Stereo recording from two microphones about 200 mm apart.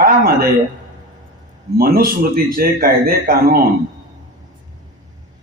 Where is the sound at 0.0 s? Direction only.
50° right (ahead or behind).